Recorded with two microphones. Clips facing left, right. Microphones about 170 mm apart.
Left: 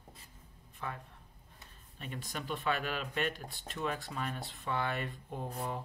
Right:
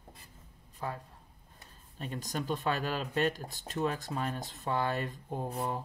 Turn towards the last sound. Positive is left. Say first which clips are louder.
# right 4 dB
turn(degrees=-40)  # may be behind; listen again after turning